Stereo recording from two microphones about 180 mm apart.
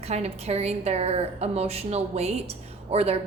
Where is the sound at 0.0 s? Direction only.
35° right (ahead or behind).